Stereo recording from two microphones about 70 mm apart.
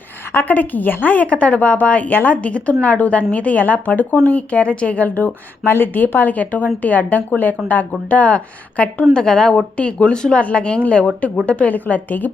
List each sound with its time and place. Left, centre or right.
0.3 s speech: left